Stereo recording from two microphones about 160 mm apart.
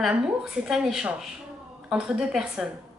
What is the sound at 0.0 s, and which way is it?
A woman's voice, 5° right (ahead or behind).